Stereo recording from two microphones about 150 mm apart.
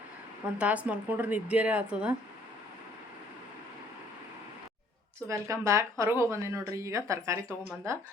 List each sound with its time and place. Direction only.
0.6 s a woman's voice: 10° right (ahead or behind)
5.3 s speech: 20° right (ahead or behind)